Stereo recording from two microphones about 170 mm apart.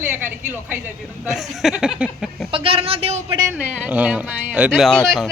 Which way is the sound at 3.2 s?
20° right (ahead or behind).